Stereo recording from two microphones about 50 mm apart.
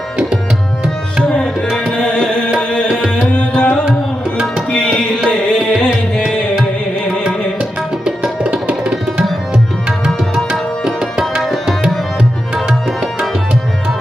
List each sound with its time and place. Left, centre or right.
1.2 s tabla: centre
3.3 s music: left
4.7 s tabla: centre
5.3 s music: centre
7.3 s tabla: centre
10.3 s tabla: centre